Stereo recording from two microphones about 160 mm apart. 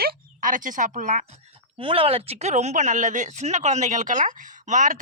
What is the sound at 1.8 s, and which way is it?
Speech, 35° right (ahead or behind).